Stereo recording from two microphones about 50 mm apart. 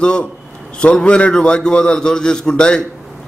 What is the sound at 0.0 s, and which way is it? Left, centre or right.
A man's voice, centre.